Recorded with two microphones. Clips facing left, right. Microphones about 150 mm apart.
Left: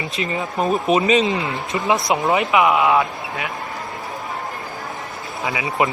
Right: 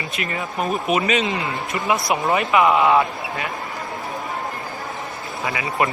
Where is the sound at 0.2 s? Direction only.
20° left (ahead or behind); by 3.5 s 5° left (ahead or behind).